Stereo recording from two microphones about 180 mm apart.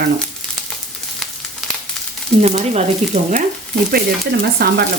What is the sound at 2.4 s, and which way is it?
Speech, 40° right (ahead or behind).